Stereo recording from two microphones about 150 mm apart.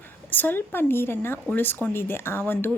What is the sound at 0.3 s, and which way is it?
Speech, 10° left (ahead or behind).